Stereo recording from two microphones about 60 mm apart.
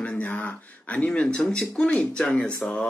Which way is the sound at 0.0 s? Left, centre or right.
Left.